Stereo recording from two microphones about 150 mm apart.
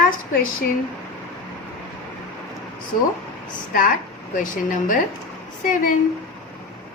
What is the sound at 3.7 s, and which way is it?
A woman's voice, 65° left (ahead or behind).